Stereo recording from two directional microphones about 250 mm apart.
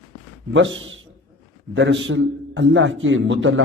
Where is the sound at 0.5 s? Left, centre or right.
Right.